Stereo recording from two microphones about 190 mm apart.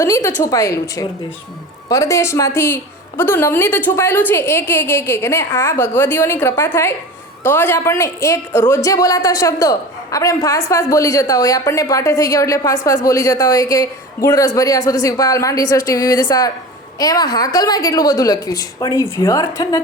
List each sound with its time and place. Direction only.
0.0 s a woman's voice: 15° left (ahead or behind)